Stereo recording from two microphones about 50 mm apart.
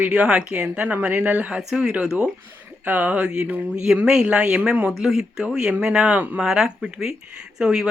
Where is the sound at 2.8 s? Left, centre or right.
Right.